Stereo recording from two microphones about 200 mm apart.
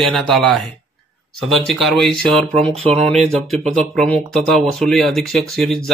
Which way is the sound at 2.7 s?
30° right (ahead or behind).